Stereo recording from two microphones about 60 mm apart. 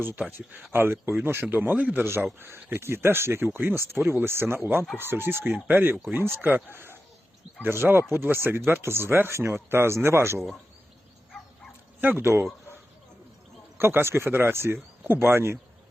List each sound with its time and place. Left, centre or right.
0.0 s speech: right
5.5 s speech: right
7.6 s speech: right
11.9 s speech: right
13.7 s speech: right